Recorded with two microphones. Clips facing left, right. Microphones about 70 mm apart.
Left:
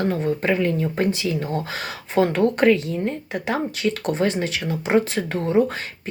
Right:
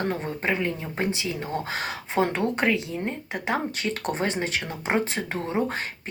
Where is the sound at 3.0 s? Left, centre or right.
Right.